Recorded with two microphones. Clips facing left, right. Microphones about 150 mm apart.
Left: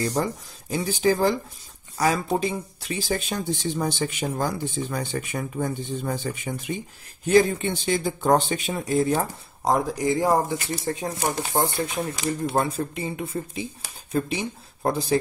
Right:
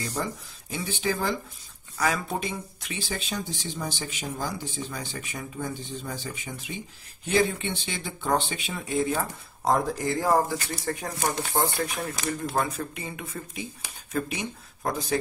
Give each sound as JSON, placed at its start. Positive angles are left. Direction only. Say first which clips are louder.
{"t": 0.0, "sound": "speech", "louder": "left 6 dB", "side_deg": 40}
{"t": 7.2, "sound": "speech", "louder": "left 6 dB", "side_deg": 40}
{"t": 9.7, "sound": "speech", "louder": "left 2 dB", "side_deg": 15}